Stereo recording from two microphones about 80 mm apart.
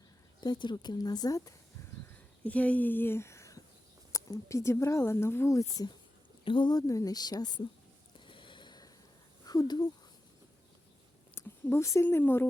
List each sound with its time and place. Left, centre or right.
0.4 s speech: left
2.4 s speech: centre; by 5.9 s left
6.4 s a woman's voice: left
6.7 s speech: left
8.3 s a sound: left
9.5 s speech: left
11.3 s a sound: left
12.1 s speech: left